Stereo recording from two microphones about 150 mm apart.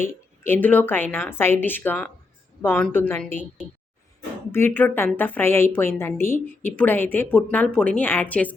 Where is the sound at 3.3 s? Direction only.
50° right (ahead or behind).